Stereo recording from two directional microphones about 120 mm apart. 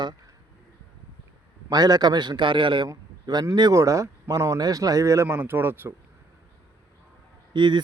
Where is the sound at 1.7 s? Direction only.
35° right (ahead or behind).